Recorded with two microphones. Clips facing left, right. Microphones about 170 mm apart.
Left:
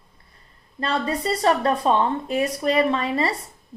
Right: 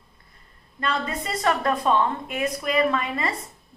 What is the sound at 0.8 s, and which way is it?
A woman's voice, 30° left (ahead or behind).